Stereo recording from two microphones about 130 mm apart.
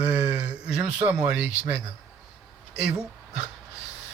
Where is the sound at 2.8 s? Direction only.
5° right (ahead or behind).